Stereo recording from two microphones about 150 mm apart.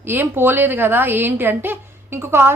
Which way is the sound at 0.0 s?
15° right (ahead or behind).